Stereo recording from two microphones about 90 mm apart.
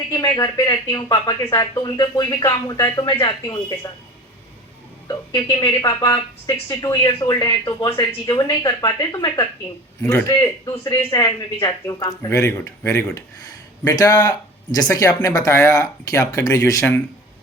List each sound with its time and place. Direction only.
0.1 s speech: 40° left (ahead or behind)
5.0 s speech: 55° left (ahead or behind)
5.7 s speech: 40° left (ahead or behind)
13.8 s speech: 45° left (ahead or behind)